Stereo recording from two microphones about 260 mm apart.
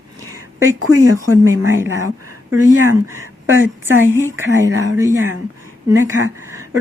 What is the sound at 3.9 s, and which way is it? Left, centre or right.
Speech, right.